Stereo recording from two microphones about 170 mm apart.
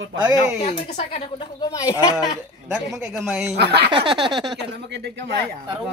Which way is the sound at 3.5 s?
75° right (ahead or behind).